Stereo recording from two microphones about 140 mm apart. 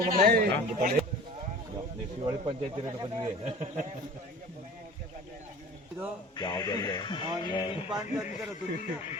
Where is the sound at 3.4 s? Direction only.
55° right (ahead or behind).